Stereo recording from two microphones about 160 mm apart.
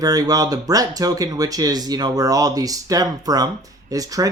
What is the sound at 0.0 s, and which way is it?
Speech, 25° right (ahead or behind).